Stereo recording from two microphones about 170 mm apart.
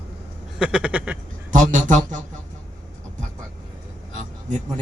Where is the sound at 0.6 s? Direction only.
5° right (ahead or behind).